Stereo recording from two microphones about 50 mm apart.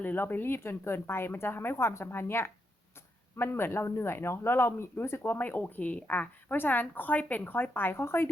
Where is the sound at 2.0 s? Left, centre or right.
Left.